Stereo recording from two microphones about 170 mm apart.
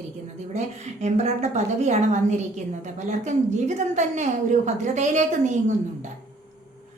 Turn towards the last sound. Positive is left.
turn(degrees=-45)  # may be behind; listen again after turning